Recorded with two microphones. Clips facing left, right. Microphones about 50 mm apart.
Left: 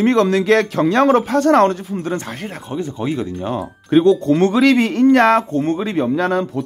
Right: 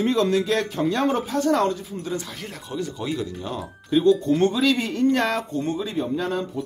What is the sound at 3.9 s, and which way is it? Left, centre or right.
Speech, left.